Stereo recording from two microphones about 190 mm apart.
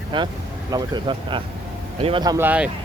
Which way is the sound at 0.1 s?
25° right (ahead or behind).